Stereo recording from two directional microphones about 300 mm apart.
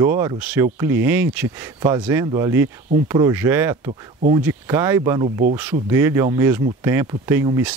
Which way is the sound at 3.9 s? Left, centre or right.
Right.